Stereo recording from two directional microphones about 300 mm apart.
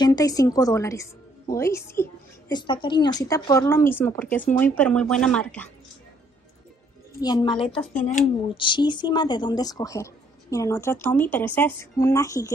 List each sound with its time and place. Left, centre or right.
0.0 s a woman's voice: centre
7.2 s a woman's voice: centre